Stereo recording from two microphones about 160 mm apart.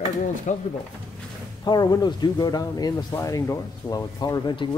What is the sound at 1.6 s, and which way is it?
Speech, 25° left (ahead or behind).